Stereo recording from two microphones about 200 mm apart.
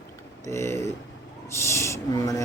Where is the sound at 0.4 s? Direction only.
15° left (ahead or behind).